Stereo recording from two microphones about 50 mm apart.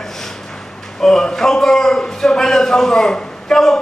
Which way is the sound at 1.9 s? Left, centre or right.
Centre.